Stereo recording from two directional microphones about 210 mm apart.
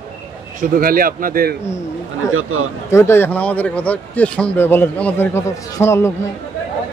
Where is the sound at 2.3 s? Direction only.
80° right.